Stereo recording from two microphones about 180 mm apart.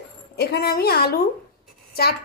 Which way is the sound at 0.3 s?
60° left (ahead or behind).